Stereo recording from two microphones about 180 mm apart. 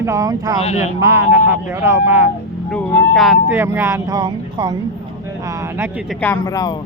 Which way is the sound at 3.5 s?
15° right (ahead or behind).